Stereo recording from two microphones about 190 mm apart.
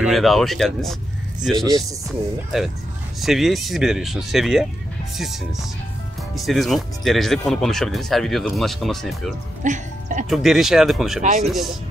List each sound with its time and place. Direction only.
0.0 s speech: centre (ahead or behind)
9.6 s music: 40° right (ahead or behind)
10.3 s speech: centre (ahead or behind)